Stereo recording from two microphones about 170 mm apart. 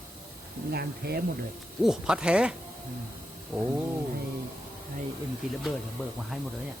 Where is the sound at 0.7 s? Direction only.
65° right (ahead or behind).